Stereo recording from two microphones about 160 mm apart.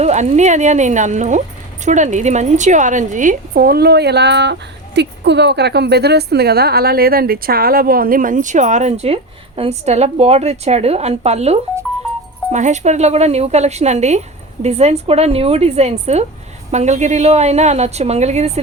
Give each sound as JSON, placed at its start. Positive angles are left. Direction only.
{"t": 0.0, "sound": "a woman's voice", "side_deg": -45}